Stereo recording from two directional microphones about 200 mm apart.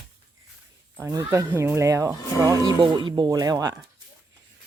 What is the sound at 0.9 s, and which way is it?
Speech, 15° right (ahead or behind).